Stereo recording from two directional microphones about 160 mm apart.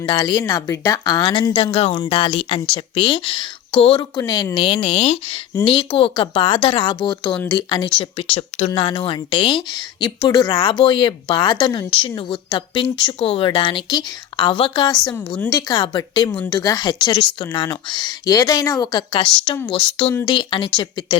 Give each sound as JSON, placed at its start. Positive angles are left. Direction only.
{"t": 0.0, "sound": "a woman's voice", "side_deg": 30}
{"t": 7.9, "sound": "a woman's voice", "side_deg": 35}